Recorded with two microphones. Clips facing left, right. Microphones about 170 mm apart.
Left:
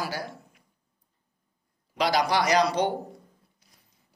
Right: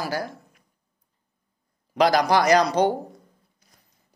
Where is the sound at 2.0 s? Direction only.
45° right (ahead or behind).